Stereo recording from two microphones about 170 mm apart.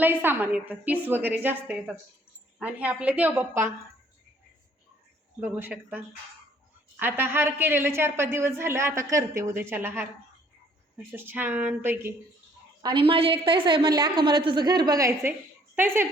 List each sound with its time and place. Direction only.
0.0 s a woman's voice: 10° right (ahead or behind)
5.4 s a woman's voice: 10° right (ahead or behind)
7.0 s a woman's voice: 10° right (ahead or behind)
12.8 s a woman's voice: 30° right (ahead or behind); by 16.0 s 15° right (ahead or behind)